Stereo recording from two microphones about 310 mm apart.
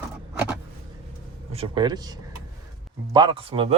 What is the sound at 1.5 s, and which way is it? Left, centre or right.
Speech, centre.